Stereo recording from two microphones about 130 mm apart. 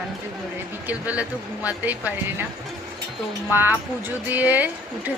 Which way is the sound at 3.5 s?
15° right (ahead or behind).